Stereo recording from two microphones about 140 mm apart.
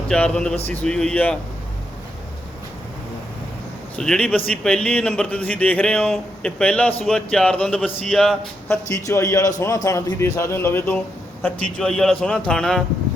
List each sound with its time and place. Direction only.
0.1 s a man's voice: 5° left (ahead or behind)
3.9 s a man's voice: 5° left (ahead or behind)
8.9 s a man's voice: 25° left (ahead or behind)
11.4 s a man's voice: 5° left (ahead or behind)